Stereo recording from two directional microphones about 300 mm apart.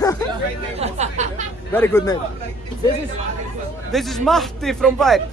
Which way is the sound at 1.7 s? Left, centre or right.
Centre.